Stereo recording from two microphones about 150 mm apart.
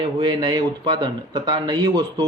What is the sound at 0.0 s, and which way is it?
Speech, 25° right (ahead or behind).